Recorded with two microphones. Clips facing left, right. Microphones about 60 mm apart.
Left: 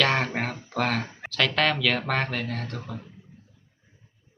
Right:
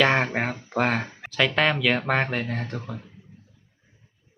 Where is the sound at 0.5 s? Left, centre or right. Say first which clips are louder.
Right 3 dB; right.